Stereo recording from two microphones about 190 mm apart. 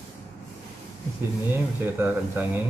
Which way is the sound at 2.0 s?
10° right (ahead or behind).